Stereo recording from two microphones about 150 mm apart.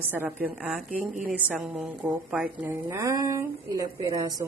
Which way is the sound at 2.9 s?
20° right (ahead or behind).